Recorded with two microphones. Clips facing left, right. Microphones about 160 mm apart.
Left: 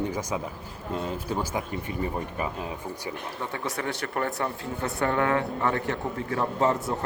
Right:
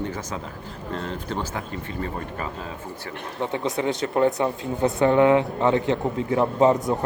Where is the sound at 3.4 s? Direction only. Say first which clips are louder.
Right 8 dB; 20° right (ahead or behind).